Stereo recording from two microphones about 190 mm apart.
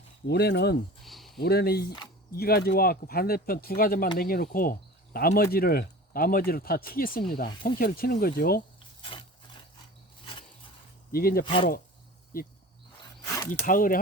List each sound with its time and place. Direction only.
0.3 s speech: 60° left (ahead or behind)
1.0 s a sound: centre (ahead or behind)
1.4 s speech: 55° left (ahead or behind)
11.1 s speech: 50° left (ahead or behind)
11.4 s speech: 25° left (ahead or behind)
12.3 s speech: 50° left (ahead or behind)
13.5 s speech: 45° left (ahead or behind)